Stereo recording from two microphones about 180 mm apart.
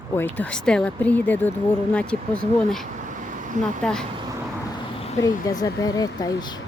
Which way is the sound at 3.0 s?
45° right (ahead or behind).